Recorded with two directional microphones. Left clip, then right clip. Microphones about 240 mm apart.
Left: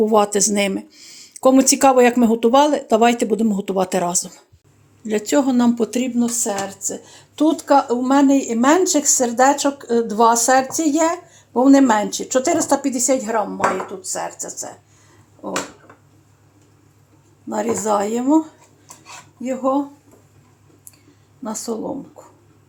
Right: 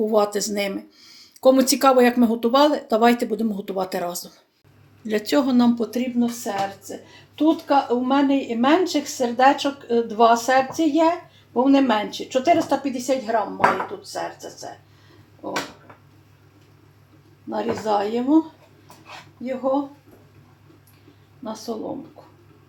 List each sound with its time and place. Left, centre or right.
0.0 s speech: left
5.0 s speech: left
5.8 s speech: left
17.5 s speech: left
21.7 s speech: left